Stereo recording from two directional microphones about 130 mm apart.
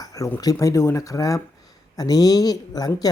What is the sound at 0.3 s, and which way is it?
Speech, 25° left (ahead or behind).